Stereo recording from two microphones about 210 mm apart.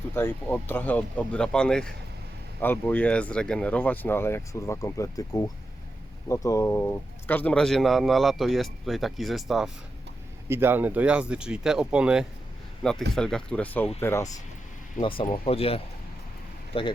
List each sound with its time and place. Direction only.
0.1 s speech: 10° left (ahead or behind)
15.0 s speech: 25° left (ahead or behind)